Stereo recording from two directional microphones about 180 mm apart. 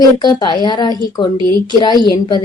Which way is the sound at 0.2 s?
25° left (ahead or behind).